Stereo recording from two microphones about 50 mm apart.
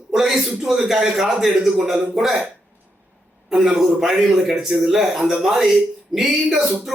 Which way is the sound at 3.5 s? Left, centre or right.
Centre.